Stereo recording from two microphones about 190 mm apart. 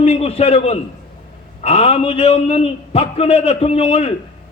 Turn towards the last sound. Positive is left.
turn(degrees=30)  # may be behind; listen again after turning